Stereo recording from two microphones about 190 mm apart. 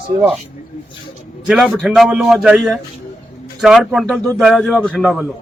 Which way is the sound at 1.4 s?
5° right (ahead or behind).